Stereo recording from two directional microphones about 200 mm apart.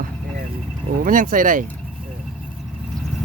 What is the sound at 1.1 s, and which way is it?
Speech, 45° right (ahead or behind).